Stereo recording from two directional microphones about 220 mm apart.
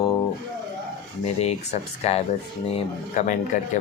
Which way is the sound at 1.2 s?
30° left (ahead or behind).